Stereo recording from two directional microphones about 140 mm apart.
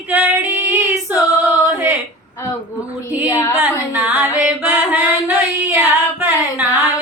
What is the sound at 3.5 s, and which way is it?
Female singing, 10° right (ahead or behind).